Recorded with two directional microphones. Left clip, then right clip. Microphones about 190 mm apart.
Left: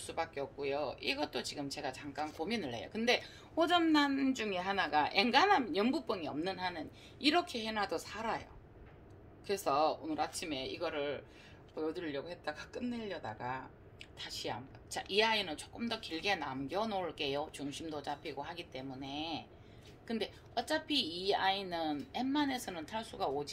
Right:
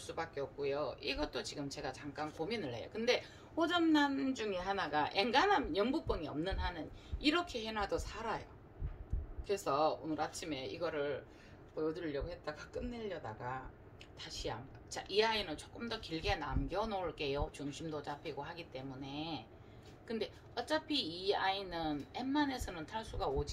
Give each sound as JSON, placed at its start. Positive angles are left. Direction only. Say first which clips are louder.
{"t": 0.0, "sound": "a man's voice", "louder": "left 2 dB", "side_deg": 45}
{"t": 9.5, "sound": "a man's voice", "louder": "left 2 dB", "side_deg": 45}